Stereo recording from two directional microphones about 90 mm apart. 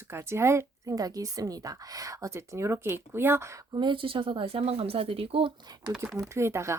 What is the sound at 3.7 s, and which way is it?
Speech, 60° right (ahead or behind).